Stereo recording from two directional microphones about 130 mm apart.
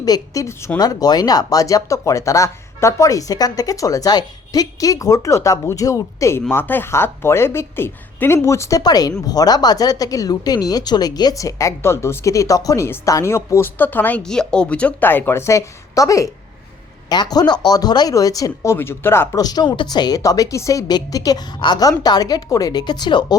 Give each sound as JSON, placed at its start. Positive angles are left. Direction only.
{"t": 0.0, "sound": "speech", "side_deg": 25}